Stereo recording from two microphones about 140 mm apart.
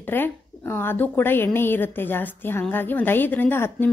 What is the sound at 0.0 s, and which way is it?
A woman's voice, 15° left (ahead or behind).